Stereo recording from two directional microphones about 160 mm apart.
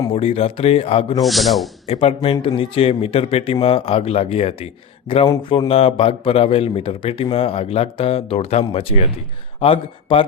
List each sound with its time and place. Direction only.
0.1 s a man's voice: 35° left (ahead or behind)
1.2 s speech: centre (ahead or behind)
1.9 s a man's voice: 35° left (ahead or behind)